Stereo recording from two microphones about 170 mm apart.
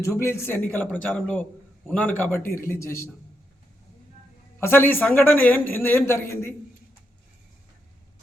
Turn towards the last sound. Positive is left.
turn(degrees=15)  # may be behind; listen again after turning